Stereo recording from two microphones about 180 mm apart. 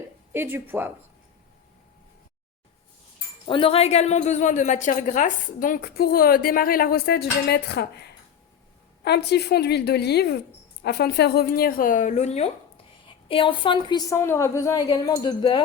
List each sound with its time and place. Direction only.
0.3 s speech: 10° right (ahead or behind)
3.4 s a woman's voice: 30° left (ahead or behind); by 8.0 s 65° left (ahead or behind)
9.0 s a woman's voice: 65° left (ahead or behind); by 15.6 s 25° left (ahead or behind)